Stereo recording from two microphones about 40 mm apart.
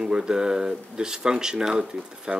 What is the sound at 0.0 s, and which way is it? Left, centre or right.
Speech, centre.